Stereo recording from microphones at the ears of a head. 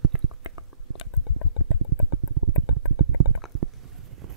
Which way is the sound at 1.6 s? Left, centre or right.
Right.